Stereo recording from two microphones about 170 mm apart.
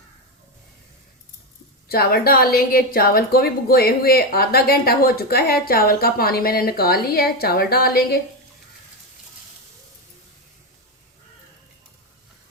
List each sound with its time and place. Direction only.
1.9 s a woman's voice: 65° left (ahead or behind)